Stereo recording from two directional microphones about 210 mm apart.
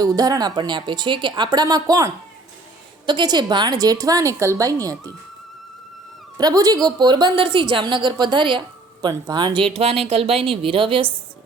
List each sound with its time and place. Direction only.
0.2 s a woman's voice: 20° right (ahead or behind)
6.3 s a woman's voice: 15° right (ahead or behind)